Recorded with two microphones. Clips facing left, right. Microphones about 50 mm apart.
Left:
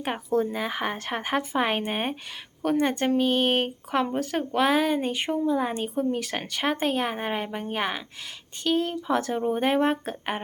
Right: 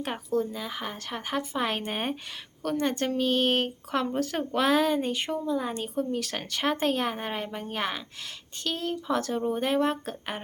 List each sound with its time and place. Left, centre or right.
0.3 s speech: left
1.8 s speech: centre